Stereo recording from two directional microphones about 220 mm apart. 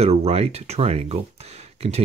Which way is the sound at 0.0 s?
30° right (ahead or behind).